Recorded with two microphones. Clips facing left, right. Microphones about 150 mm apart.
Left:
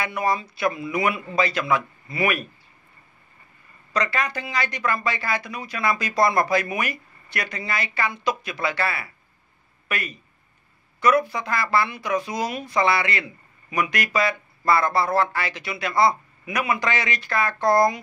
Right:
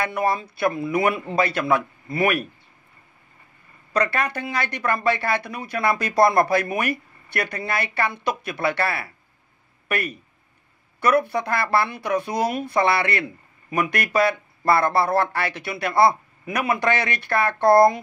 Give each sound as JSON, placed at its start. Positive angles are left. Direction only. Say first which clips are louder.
{"t": 0.0, "sound": "speech", "louder": "right 2 dB", "side_deg": -55}
{"t": 3.9, "sound": "speech", "louder": "right 2 dB", "side_deg": -55}